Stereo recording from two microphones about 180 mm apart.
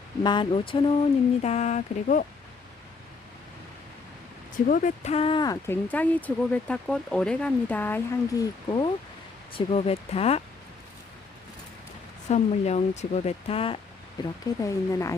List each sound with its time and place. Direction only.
0.2 s a sound: 25° left (ahead or behind)
1.4 s speech: 40° left (ahead or behind)
4.7 s speech: 45° left (ahead or behind); by 8.9 s 20° left (ahead or behind)
9.5 s speech: 30° left (ahead or behind)
12.3 s speech: 40° left (ahead or behind)
14.2 s a sound: 20° left (ahead or behind)
14.6 s speech: 15° left (ahead or behind)